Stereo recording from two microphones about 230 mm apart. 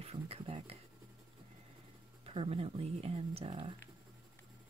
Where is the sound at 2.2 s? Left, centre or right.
Right.